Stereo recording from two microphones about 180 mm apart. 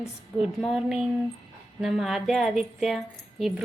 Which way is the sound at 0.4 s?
5° right (ahead or behind).